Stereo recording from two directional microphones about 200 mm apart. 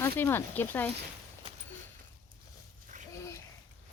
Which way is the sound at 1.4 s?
30° right (ahead or behind).